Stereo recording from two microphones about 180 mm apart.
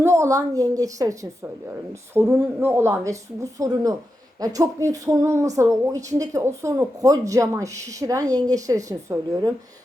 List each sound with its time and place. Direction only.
0.0 s a woman's voice: 15° right (ahead or behind)